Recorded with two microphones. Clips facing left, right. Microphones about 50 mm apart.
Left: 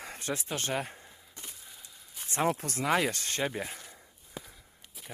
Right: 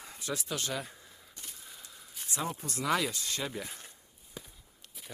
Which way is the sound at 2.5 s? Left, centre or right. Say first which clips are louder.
Left 8 dB; left.